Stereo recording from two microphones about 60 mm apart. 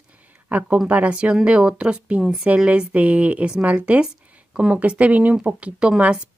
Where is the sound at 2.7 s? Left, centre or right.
Right.